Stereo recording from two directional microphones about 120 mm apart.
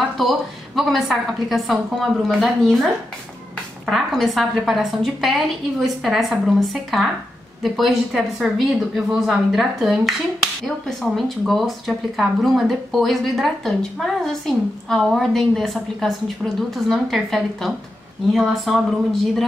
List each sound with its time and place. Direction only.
0.2 s speech: centre (ahead or behind)